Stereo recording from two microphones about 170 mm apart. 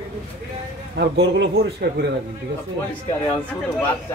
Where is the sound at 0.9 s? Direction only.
80° right.